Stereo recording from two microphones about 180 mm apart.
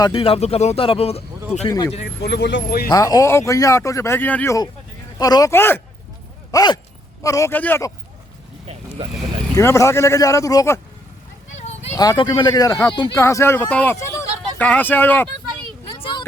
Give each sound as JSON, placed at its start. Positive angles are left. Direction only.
{"t": 0.0, "sound": "a man's voice", "side_deg": 30}
{"t": 2.2, "sound": "speech", "side_deg": 70}
{"t": 2.9, "sound": "speech", "side_deg": 20}
{"t": 5.1, "sound": "speech", "side_deg": 20}
{"t": 6.5, "sound": "dog", "side_deg": 20}
{"t": 7.2, "sound": "speech", "side_deg": 15}
{"t": 8.6, "sound": "vehicle", "side_deg": -30}
{"t": 9.6, "sound": "speech", "side_deg": 15}
{"t": 11.5, "sound": "a sound", "side_deg": 40}
{"t": 11.9, "sound": "speech", "side_deg": 25}
{"t": 16.0, "sound": "a sound", "side_deg": 25}